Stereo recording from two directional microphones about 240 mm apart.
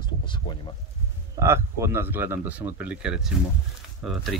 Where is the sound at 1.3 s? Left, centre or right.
Centre.